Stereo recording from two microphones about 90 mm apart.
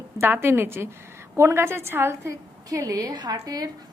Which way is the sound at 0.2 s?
25° right (ahead or behind).